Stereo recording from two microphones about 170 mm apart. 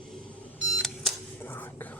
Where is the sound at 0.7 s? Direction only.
Centre (ahead or behind).